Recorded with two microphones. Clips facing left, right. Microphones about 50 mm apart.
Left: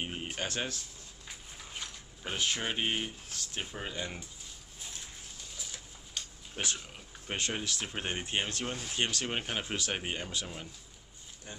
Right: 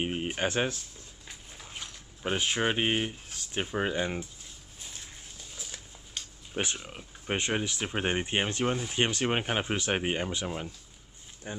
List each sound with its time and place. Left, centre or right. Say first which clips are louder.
0.0 s speech: right 7 dB; right
2.2 s speech: right 6 dB; right
6.5 s speech: right 4 dB; right